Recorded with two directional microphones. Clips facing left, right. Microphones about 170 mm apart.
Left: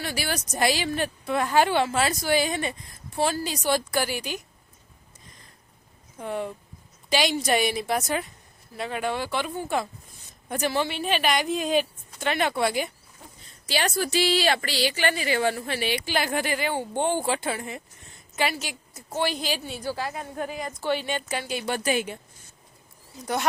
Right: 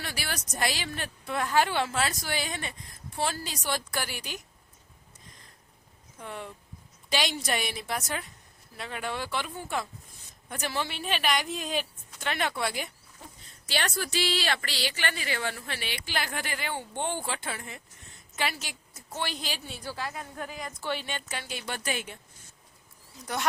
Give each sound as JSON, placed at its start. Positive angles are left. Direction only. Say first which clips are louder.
{"t": 0.0, "sound": "a woman's voice", "louder": "left 7 dB", "side_deg": 5}
{"t": 7.1, "sound": "a woman's voice", "louder": "left 6 dB", "side_deg": 5}
{"t": 16.7, "sound": "speech", "louder": "left 5 dB", "side_deg": 40}
{"t": 17.2, "sound": "a woman's voice", "louder": "left 8 dB", "side_deg": 10}
{"t": 20.4, "sound": "a woman's voice", "louder": "left 7 dB", "side_deg": 25}
{"t": 20.8, "sound": "speech", "louder": "left 7 dB", "side_deg": 5}
{"t": 23.2, "sound": "a woman's voice", "louder": "left 5 dB", "side_deg": 5}